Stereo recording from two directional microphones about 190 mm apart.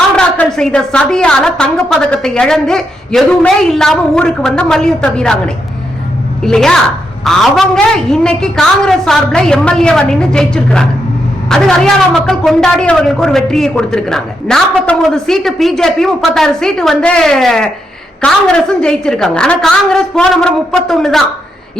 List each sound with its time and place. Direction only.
0.2 s a woman's voice: 5° left (ahead or behind)
6.4 s a woman's voice: 5° left (ahead or behind)